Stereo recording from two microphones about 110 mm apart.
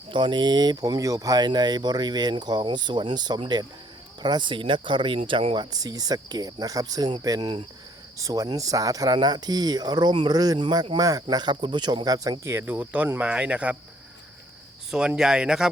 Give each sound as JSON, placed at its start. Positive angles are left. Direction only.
{"t": 0.1, "sound": "speech", "side_deg": -45}
{"t": 5.5, "sound": "speech", "side_deg": -35}
{"t": 12.5, "sound": "speech", "side_deg": -20}
{"t": 14.8, "sound": "speech", "side_deg": -5}